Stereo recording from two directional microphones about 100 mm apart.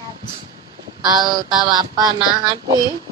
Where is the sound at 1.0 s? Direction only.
45° right (ahead or behind).